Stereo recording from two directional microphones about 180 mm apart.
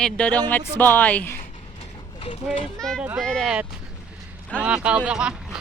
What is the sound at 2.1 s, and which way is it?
Speech, 30° left (ahead or behind).